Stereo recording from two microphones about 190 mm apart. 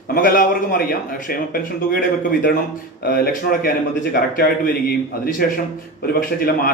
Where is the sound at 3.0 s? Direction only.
55° left (ahead or behind).